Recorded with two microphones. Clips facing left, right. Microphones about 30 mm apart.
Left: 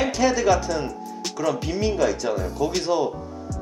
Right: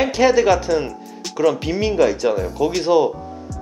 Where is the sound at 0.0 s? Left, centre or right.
Centre.